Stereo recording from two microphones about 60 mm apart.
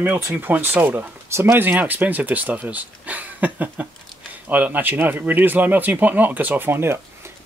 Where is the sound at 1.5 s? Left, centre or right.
Right.